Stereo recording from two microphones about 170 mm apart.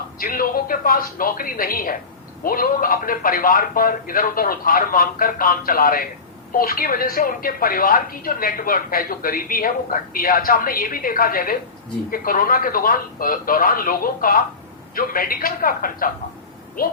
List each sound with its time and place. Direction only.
0.2 s speech: 60° left (ahead or behind)